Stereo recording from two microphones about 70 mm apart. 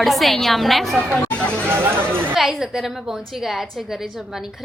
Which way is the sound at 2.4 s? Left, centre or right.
Centre.